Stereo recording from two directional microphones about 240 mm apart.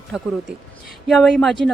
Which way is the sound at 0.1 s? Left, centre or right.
Centre.